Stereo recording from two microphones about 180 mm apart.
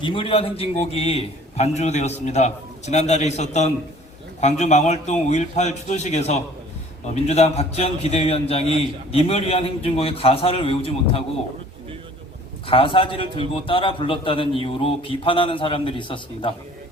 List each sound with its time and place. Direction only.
0.0 s a man's voice: 30° left (ahead or behind)
12.6 s a man's voice: 30° left (ahead or behind)